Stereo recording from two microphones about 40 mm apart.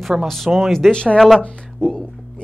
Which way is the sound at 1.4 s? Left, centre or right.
Left.